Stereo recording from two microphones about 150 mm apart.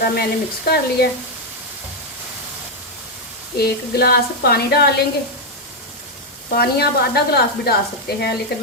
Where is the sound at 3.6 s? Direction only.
90° left.